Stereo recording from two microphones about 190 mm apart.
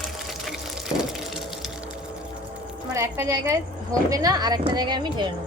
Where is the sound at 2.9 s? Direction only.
15° right (ahead or behind).